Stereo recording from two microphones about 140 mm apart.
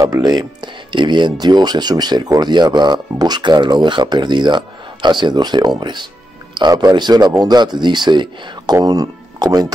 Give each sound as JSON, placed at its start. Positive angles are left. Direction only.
{"t": 0.0, "sound": "speech", "side_deg": -25}